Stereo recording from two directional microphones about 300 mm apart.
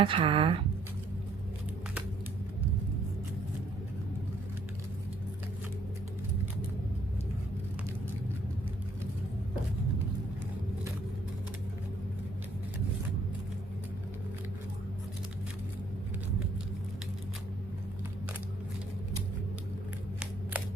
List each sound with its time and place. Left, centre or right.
0.0 s speech: centre